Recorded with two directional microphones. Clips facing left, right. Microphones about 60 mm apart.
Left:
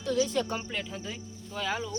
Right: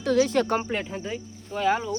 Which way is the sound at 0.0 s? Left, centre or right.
Right.